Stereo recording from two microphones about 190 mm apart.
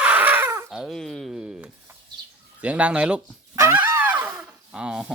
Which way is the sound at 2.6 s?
5° right (ahead or behind).